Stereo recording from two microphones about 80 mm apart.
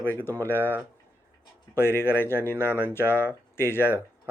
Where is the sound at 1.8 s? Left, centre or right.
Left.